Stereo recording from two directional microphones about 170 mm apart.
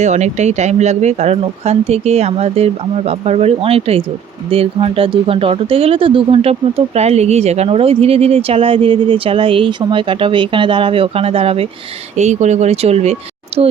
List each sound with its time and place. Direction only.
0.0 s speech: 40° right (ahead or behind)